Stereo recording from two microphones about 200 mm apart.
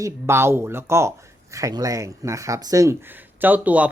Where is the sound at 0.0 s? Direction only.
10° right (ahead or behind).